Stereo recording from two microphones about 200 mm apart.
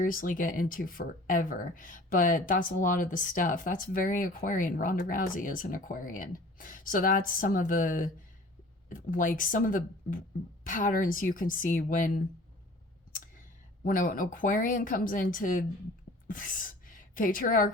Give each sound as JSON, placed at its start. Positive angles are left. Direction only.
{"t": 0.0, "sound": "speech", "side_deg": 45}
{"t": 13.8, "sound": "a woman's voice", "side_deg": 45}